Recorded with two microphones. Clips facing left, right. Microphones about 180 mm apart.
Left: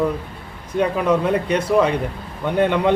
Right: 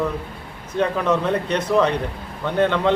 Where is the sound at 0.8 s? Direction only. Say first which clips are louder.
Left 2 dB; 10° left (ahead or behind).